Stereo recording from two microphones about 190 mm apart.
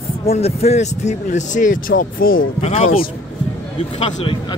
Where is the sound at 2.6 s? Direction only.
30° left (ahead or behind).